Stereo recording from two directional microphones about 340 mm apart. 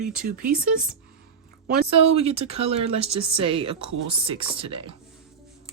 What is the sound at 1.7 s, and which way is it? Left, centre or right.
Speech, centre.